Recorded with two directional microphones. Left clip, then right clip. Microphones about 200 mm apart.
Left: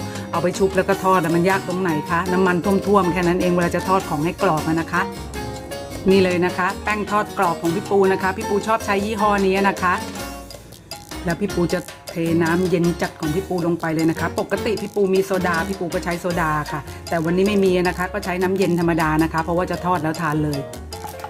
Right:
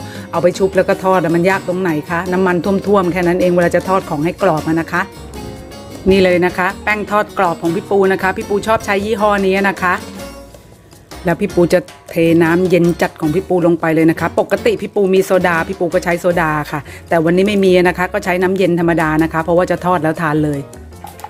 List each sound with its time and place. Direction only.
0.3 s speech: 20° right (ahead or behind)
6.1 s speech: 25° right (ahead or behind)
11.3 s speech: 40° right (ahead or behind)